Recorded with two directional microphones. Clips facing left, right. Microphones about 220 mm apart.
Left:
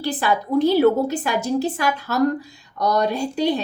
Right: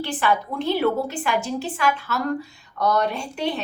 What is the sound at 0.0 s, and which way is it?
A woman's voice, 40° left (ahead or behind).